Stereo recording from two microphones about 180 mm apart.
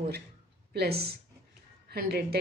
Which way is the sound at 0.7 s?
65° right (ahead or behind).